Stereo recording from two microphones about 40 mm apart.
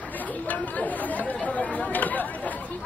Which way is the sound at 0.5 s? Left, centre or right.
Left.